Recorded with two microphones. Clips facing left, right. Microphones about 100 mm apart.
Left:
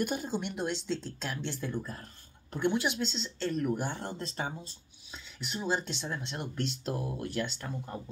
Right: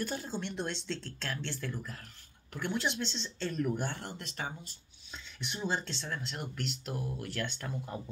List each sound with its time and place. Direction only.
0.0 s a woman's voice: 15° left (ahead or behind)
3.9 s speech: 20° left (ahead or behind)
5.1 s speech: 5° left (ahead or behind); by 7.1 s 30° left (ahead or behind)
7.1 s a woman's voice: 20° left (ahead or behind)